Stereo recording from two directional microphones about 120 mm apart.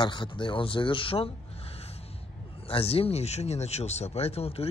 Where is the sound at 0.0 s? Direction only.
40° left (ahead or behind).